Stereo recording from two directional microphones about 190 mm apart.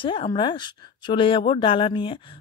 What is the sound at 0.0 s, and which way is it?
Speech, 30° left (ahead or behind).